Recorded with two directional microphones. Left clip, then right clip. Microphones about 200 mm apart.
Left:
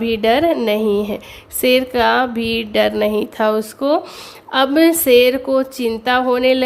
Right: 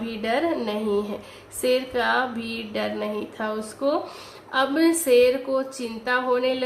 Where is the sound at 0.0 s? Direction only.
45° left (ahead or behind).